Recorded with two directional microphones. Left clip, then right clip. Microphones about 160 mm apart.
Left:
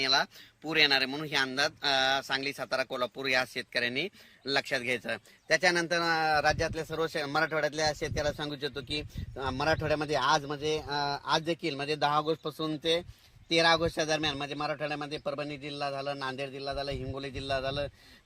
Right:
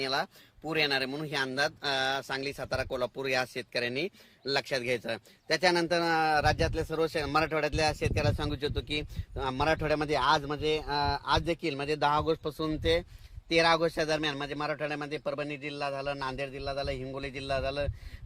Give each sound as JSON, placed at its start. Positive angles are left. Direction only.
{"t": 0.0, "sound": "a man's voice", "side_deg": -80}